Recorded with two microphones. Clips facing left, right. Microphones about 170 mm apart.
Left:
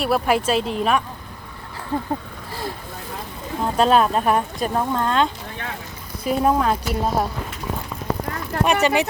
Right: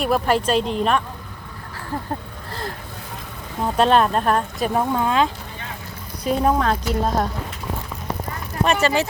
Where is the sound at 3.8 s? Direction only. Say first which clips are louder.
Even; centre (ahead or behind).